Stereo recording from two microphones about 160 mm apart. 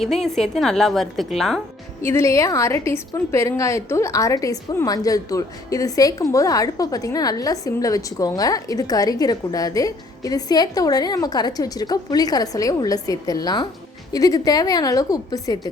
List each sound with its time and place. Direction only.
0.0 s a woman's voice: centre (ahead or behind)
2.0 s a woman's voice: 15° left (ahead or behind)